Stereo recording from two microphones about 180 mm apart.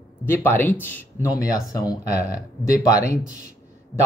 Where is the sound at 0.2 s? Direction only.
10° left (ahead or behind).